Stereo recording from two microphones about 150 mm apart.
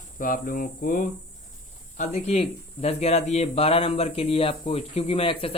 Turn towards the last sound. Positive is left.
turn(degrees=35)  # may be behind; listen again after turning